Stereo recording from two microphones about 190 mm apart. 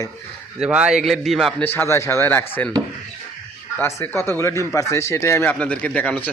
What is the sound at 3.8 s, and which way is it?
A man's voice, 15° left (ahead or behind).